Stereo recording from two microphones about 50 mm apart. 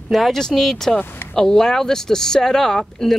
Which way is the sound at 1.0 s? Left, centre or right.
Left.